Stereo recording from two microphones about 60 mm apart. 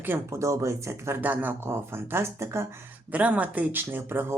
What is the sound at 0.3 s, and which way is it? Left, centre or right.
Speech, right.